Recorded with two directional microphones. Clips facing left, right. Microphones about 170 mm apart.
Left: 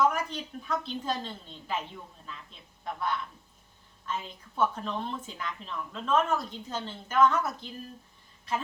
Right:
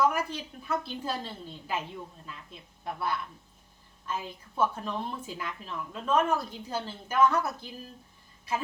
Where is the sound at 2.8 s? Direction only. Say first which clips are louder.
Even; 5° right (ahead or behind).